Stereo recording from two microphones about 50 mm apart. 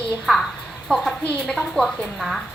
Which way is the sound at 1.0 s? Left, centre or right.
Centre.